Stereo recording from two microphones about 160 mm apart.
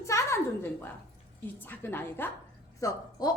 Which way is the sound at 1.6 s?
15° left (ahead or behind).